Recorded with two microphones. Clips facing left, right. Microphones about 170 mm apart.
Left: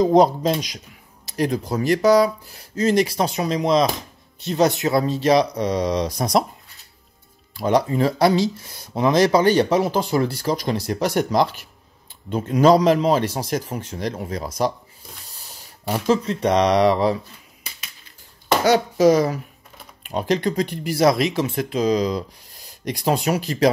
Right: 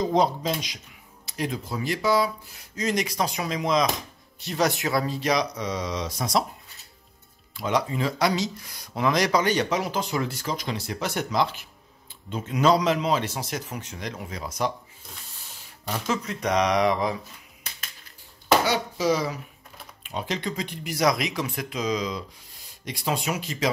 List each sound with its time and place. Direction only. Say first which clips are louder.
0.0 s speech: left 8 dB; 45° left (ahead or behind)
7.5 s speech: left 7 dB; 35° left (ahead or behind)
12.3 s speech: left 6 dB; 50° left (ahead or behind); by 17.2 s 35° left (ahead or behind)
18.7 s speech: left 9 dB; 50° left (ahead or behind)